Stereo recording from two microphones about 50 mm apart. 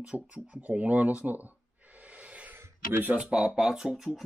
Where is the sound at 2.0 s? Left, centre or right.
Right.